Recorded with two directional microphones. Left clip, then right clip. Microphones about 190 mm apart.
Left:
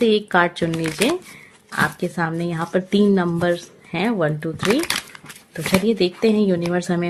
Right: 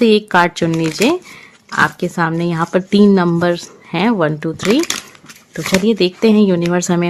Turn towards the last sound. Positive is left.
turn(degrees=-40)  # may be behind; listen again after turning